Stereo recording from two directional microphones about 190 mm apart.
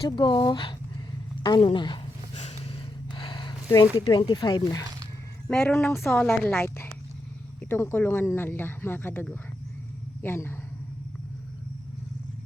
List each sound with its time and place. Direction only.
0.2 s speech: 25° left (ahead or behind)
2.3 s a sound: 35° left (ahead or behind)
4.0 s speech: 25° left (ahead or behind)
5.5 s speech: 5° left (ahead or behind)